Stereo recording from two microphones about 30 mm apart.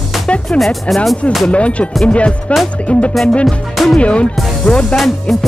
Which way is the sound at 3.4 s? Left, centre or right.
Centre.